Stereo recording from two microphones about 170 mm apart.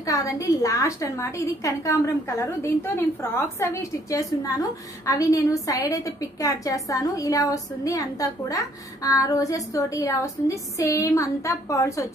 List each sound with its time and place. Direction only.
0.0 s a woman's voice: 20° left (ahead or behind)